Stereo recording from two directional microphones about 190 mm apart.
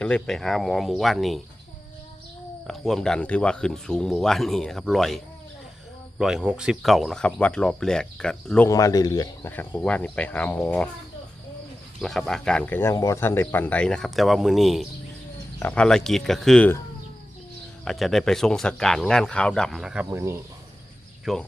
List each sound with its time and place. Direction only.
0.0 s speech: 5° left (ahead or behind)
2.6 s speech: centre (ahead or behind)
8.7 s speech: 20° left (ahead or behind)
9.5 s speech: 10° left (ahead or behind)
11.9 s speech: centre (ahead or behind)
17.8 s speech: centre (ahead or behind); by 20.4 s 15° right (ahead or behind)
21.3 s speech: centre (ahead or behind)